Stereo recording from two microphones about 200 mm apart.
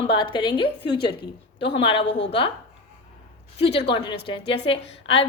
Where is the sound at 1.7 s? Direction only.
25° left (ahead or behind).